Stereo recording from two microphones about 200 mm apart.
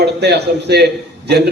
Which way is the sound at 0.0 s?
55° right (ahead or behind).